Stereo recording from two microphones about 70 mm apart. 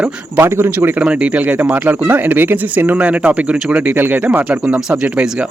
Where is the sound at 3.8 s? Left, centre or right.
Right.